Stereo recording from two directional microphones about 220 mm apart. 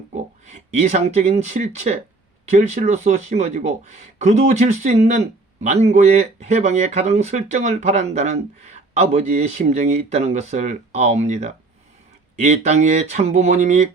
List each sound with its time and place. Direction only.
0.1 s speech: 30° right (ahead or behind)